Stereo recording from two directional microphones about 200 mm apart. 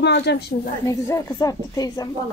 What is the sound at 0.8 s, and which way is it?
A woman's voice, 15° left (ahead or behind).